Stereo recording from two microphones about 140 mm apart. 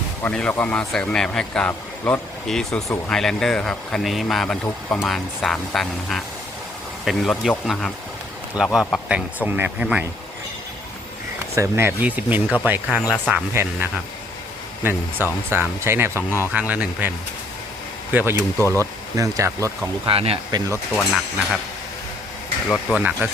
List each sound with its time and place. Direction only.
0.2 s a man's voice: 10° left (ahead or behind); by 10.0 s 10° right (ahead or behind)
11.5 s speech: 20° right (ahead or behind)
18.1 s speech: 15° right (ahead or behind)
18.5 s a man's voice: 15° left (ahead or behind)
18.8 s speech: 25° right (ahead or behind)
20.1 s speech: 40° right (ahead or behind)
20.9 s a man's voice: 10° left (ahead or behind)
22.7 s speech: 10° right (ahead or behind)